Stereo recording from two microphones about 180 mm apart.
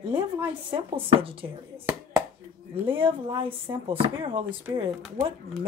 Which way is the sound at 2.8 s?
30° right (ahead or behind).